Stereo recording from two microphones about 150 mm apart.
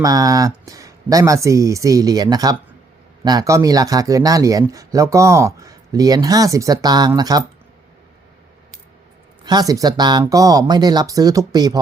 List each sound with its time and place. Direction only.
0.0 s speech: 25° right (ahead or behind)
9.4 s speech: 30° right (ahead or behind)